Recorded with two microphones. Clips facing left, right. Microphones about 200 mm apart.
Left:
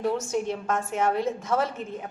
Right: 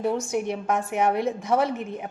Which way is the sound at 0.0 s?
15° right (ahead or behind).